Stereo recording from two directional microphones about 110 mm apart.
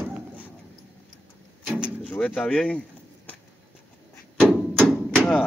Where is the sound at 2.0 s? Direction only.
15° left (ahead or behind).